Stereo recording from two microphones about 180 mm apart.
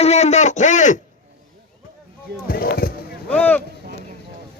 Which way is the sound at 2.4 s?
55° left (ahead or behind).